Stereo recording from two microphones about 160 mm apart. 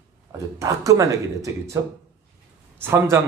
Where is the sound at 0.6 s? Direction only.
20° right (ahead or behind).